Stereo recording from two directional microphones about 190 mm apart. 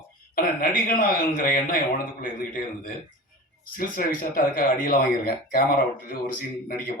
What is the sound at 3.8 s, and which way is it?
Speech, 50° left (ahead or behind).